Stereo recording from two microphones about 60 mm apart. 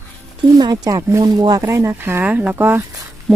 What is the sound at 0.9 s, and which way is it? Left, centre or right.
Speech, right.